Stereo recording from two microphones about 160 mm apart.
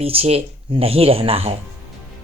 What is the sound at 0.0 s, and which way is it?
Speech, 40° right (ahead or behind).